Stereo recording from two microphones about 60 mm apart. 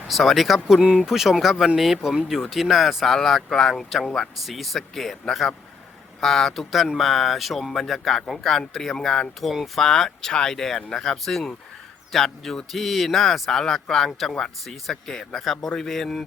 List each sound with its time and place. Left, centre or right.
0.1 s speech: centre
9.8 s speech: centre